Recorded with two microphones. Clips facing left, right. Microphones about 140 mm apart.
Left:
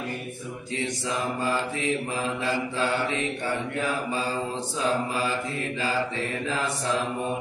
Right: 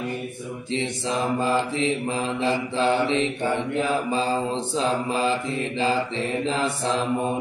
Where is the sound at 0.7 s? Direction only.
25° right (ahead or behind).